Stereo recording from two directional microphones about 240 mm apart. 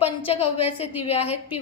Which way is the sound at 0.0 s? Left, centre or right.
Left.